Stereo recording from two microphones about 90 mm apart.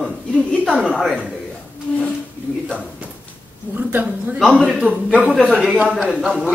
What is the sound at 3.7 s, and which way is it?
Speech, 20° right (ahead or behind).